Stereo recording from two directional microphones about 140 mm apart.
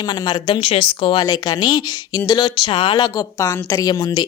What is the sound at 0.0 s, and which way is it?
Speech, 30° left (ahead or behind).